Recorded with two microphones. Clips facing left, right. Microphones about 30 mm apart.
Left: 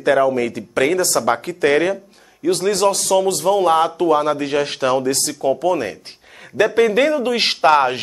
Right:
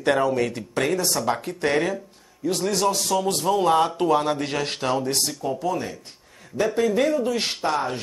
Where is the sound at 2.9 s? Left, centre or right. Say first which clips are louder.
Left 6 dB; left.